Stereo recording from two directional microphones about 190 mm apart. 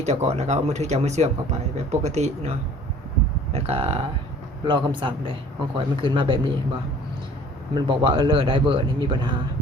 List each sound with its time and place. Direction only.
0.0 s speech: 35° right (ahead or behind)
7.8 s speech: 25° right (ahead or behind)